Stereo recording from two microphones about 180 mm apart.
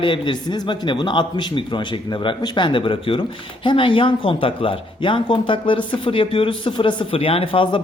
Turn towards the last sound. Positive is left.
turn(degrees=30)  # may be behind; listen again after turning